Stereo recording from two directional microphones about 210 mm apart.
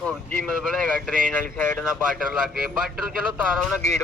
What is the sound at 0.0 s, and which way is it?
Speech, 5° left (ahead or behind).